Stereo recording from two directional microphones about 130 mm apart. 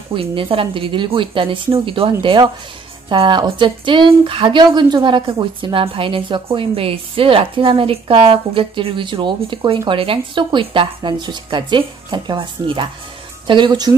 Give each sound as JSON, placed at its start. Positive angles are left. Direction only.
{"t": 0.1, "sound": "a woman's voice", "side_deg": -45}